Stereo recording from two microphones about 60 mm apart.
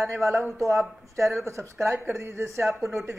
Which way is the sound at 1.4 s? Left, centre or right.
Right.